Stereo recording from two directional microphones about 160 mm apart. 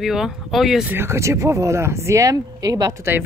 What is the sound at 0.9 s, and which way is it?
Speech, 15° right (ahead or behind).